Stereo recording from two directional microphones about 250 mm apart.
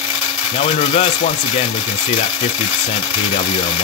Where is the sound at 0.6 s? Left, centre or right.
Left.